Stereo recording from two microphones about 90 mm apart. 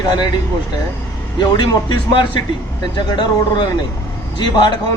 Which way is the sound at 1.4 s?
50° left (ahead or behind).